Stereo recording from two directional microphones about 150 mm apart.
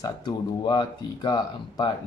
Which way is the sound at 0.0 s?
25° left (ahead or behind).